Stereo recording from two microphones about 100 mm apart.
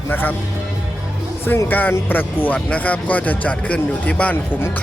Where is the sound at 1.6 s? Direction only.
20° left (ahead or behind).